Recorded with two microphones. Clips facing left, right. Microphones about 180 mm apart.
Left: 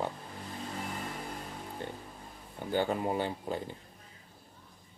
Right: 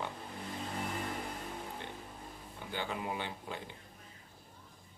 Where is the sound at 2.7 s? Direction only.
45° left (ahead or behind).